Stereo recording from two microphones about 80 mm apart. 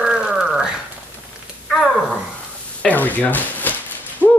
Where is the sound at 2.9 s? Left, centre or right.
Left.